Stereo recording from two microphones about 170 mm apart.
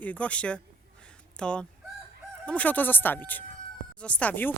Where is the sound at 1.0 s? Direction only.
5° left (ahead or behind).